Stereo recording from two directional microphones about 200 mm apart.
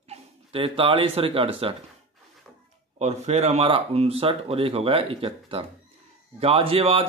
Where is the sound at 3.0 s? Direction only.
30° right (ahead or behind).